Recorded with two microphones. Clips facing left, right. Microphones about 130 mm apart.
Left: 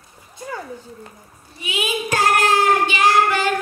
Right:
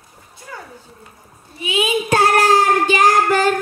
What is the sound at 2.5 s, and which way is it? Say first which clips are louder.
Child singing: right 3 dB; 40° right (ahead or behind).